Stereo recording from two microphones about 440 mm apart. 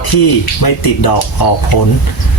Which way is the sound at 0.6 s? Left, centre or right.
Left.